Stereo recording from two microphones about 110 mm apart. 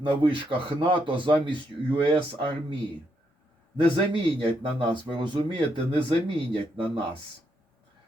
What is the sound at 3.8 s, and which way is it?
Speech, 55° right (ahead or behind).